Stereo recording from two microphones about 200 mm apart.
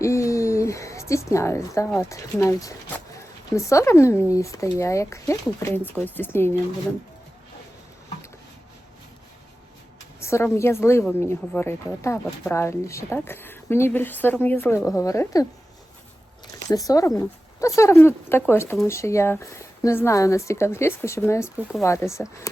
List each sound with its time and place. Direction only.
0.0 s a woman's voice: 15° left (ahead or behind)
10.2 s a woman's voice: 15° left (ahead or behind)
16.6 s a woman's voice: 15° left (ahead or behind)